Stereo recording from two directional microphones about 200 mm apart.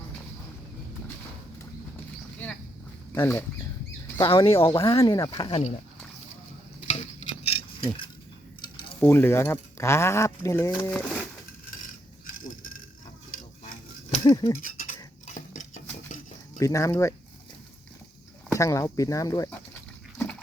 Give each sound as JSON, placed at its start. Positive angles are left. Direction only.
{"t": 3.2, "sound": "speech", "side_deg": 10}
{"t": 4.2, "sound": "speech", "side_deg": 25}
{"t": 6.8, "sound": "stir", "side_deg": 30}
{"t": 9.0, "sound": "speech", "side_deg": 10}
{"t": 12.2, "sound": "a sound", "side_deg": 40}
{"t": 14.3, "sound": "speech", "side_deg": 15}
{"t": 14.6, "sound": "speech", "side_deg": 40}
{"t": 15.4, "sound": "cutlery", "side_deg": 40}
{"t": 16.6, "sound": "speech", "side_deg": 15}
{"t": 18.4, "sound": "speech", "side_deg": 15}
{"t": 20.1, "sound": "dog", "side_deg": 5}